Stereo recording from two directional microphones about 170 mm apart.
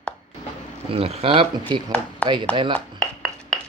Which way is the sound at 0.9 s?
35° right (ahead or behind).